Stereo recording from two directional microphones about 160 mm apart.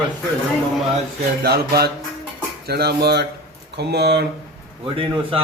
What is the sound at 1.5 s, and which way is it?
Speech, 80° right.